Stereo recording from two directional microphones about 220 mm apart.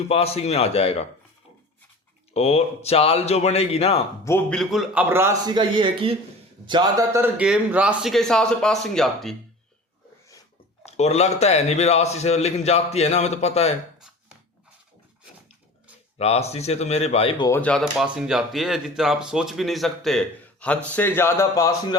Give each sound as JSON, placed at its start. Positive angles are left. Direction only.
{"t": 0.1, "sound": "a man's voice", "side_deg": 25}
{"t": 2.3, "sound": "a man's voice", "side_deg": 30}
{"t": 4.3, "sound": "a man's voice", "side_deg": 5}
{"t": 10.8, "sound": "a man's voice", "side_deg": 30}
{"t": 16.1, "sound": "a man's voice", "side_deg": 30}
{"t": 17.5, "sound": "speech", "side_deg": 5}